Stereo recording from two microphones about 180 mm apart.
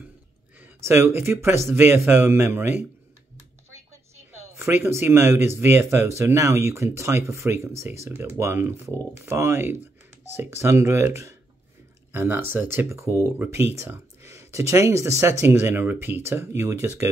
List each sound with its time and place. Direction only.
0.6 s speech: 15° right (ahead or behind)
4.3 s speech: 15° right (ahead or behind)